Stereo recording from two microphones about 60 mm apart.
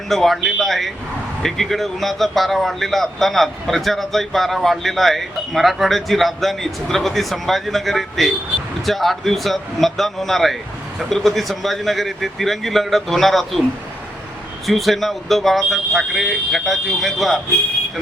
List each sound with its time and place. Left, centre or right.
0.1 s a man's voice: centre
14.7 s a man's voice: centre